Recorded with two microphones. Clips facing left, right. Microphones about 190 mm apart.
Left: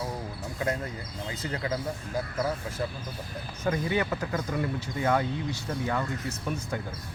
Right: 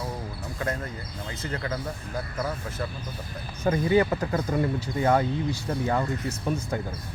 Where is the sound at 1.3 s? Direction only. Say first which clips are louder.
Even; 15° left (ahead or behind).